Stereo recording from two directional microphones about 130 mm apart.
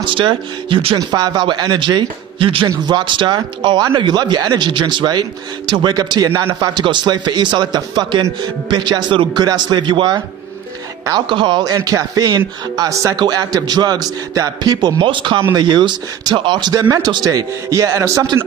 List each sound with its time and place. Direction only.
0.0 s a man's voice: 40° right (ahead or behind)
0.9 s a man's voice: 30° right (ahead or behind)
6.7 s a man's voice: 35° right (ahead or behind)
11.3 s a man's voice: 40° right (ahead or behind); by 18.3 s 25° right (ahead or behind)